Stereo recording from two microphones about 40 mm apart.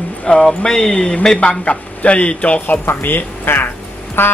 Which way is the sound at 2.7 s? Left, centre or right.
Left.